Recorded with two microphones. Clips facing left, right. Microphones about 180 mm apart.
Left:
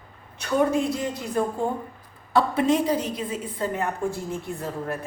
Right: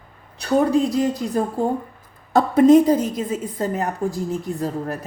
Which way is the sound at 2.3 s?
45° right (ahead or behind).